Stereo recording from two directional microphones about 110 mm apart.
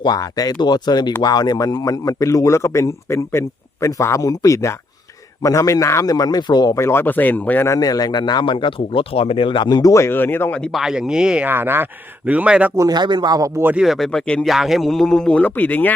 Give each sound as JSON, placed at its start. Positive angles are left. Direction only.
{"t": 0.0, "sound": "a man's voice", "side_deg": 35}
{"t": 7.8, "sound": "speech", "side_deg": 35}
{"t": 10.6, "sound": "speech", "side_deg": 0}
{"t": 11.4, "sound": "speech", "side_deg": -20}
{"t": 12.7, "sound": "a man's voice", "side_deg": -35}
{"t": 13.7, "sound": "a man's voice", "side_deg": 0}